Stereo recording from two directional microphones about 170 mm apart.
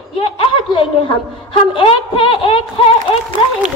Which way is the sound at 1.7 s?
30° left (ahead or behind).